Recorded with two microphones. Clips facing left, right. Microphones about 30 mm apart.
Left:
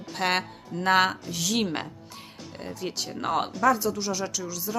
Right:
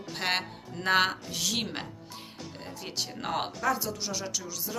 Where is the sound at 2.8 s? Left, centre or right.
Centre.